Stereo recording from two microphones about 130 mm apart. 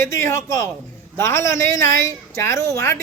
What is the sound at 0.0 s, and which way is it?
A woman's voice, 20° left (ahead or behind).